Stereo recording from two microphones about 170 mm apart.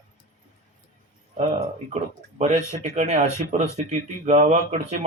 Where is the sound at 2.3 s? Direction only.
40° right (ahead or behind).